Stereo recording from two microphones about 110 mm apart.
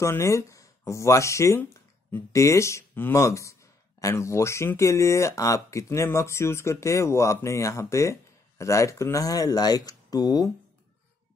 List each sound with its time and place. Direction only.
0.0 s speech: 25° left (ahead or behind)